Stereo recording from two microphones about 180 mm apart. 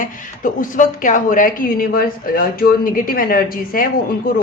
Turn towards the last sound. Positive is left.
turn(degrees=50)  # may be behind; listen again after turning